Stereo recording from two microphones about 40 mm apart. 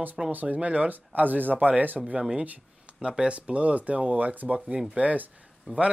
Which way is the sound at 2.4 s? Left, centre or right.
Right.